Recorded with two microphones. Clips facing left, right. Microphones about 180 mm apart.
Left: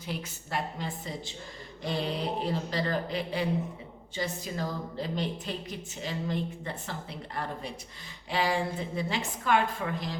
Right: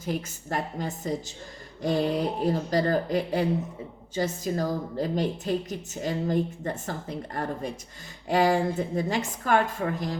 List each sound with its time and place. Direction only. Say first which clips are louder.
0.0 s a woman's voice: right 6 dB; 45° right (ahead or behind)